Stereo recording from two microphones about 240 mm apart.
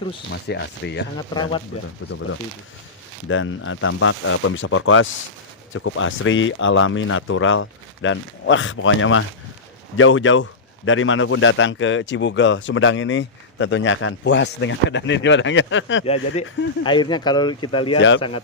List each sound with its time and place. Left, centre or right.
0.4 s a man's voice: left
1.3 s speech: centre
2.0 s speech: left
3.2 s a man's voice: left
16.8 s speech: centre